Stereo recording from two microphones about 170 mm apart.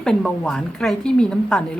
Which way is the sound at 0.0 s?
5° left (ahead or behind).